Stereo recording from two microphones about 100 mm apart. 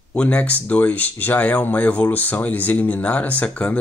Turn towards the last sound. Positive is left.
turn(degrees=10)  # may be behind; listen again after turning